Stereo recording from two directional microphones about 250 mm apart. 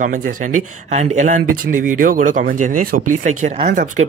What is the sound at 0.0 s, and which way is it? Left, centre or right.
Speech, right.